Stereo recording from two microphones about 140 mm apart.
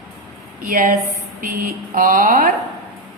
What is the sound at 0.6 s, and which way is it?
Speech, 75° right (ahead or behind).